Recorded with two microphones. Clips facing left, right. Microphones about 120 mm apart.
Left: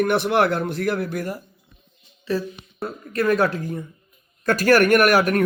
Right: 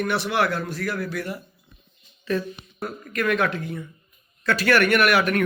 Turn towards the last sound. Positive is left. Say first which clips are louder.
# left 3 dB
turn(degrees=40)  # may be behind; listen again after turning